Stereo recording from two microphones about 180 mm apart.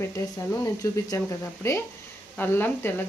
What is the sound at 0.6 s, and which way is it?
Speech, 15° left (ahead or behind).